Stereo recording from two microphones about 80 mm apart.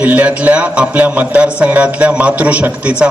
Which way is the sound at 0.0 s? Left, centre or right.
Centre.